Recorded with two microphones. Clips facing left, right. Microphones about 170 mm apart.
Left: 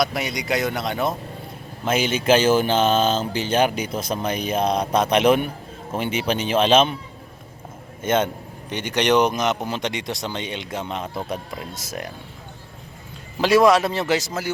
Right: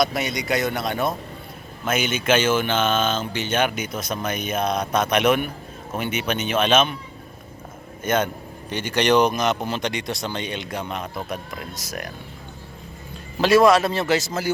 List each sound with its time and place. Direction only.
0.0 s a man's voice: 15° left (ahead or behind)
1.8 s speech: 30° left (ahead or behind)
8.0 s speech: 25° left (ahead or behind)
13.4 s a man's voice: 15° left (ahead or behind)